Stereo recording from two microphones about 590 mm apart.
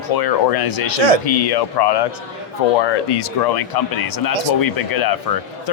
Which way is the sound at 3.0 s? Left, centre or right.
Left.